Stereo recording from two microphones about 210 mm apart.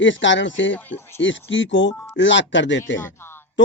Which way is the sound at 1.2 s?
60° left (ahead or behind).